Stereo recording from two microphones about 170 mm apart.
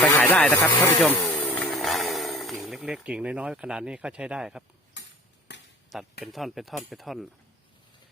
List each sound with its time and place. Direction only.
0.0 s snake: 10° left (ahead or behind)
0.9 s speech: 10° left (ahead or behind)
5.0 s cutlery: 90° left
5.5 s chop: 90° left
5.9 s speech: centre (ahead or behind)